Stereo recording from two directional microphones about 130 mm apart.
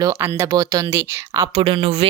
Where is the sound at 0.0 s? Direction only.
20° right (ahead or behind).